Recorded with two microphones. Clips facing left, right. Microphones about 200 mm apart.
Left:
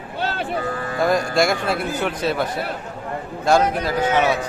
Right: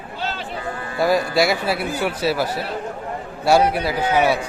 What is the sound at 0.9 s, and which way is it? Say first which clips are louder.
A man's voice: right 1 dB; 5° right (ahead or behind).